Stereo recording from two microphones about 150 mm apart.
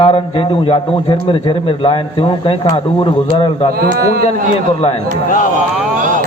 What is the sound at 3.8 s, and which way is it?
Speech, 90° right.